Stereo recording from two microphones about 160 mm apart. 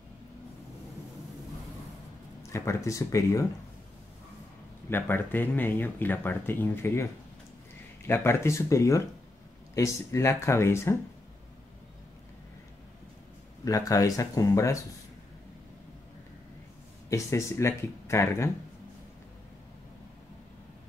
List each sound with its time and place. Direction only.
2.5 s speech: 20° left (ahead or behind)
4.8 s speech: 15° left (ahead or behind)
8.1 s speech: 15° left (ahead or behind)
13.7 s speech: 20° left (ahead or behind)
17.1 s speech: 15° left (ahead or behind)